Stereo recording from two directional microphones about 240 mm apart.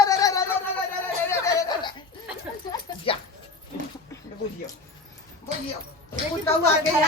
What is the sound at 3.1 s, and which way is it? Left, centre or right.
Speech, left.